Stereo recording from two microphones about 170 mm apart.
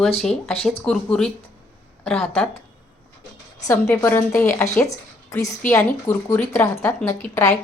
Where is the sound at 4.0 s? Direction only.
15° left (ahead or behind).